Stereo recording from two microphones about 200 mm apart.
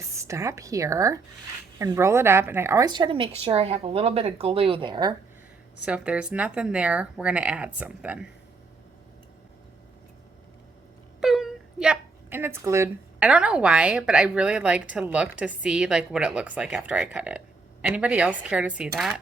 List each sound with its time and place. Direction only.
0.0 s a woman's voice: 15° right (ahead or behind)
5.8 s speech: 5° right (ahead or behind)
11.2 s a woman's voice: centre (ahead or behind)